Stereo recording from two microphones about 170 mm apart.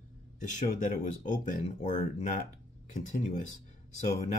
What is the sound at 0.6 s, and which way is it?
Speech, 50° left (ahead or behind).